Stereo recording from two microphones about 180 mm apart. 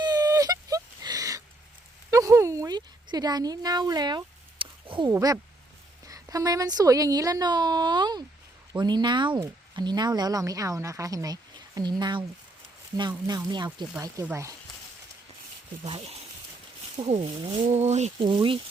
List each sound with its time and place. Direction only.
0.0 s a sound: 20° right (ahead or behind)
5.1 s speech: 20° right (ahead or behind)
15.8 s speech: 35° right (ahead or behind)